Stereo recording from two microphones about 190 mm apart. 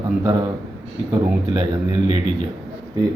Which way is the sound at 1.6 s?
20° right (ahead or behind).